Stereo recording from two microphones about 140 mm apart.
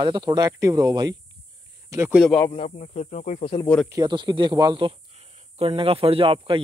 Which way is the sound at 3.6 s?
5° left (ahead or behind).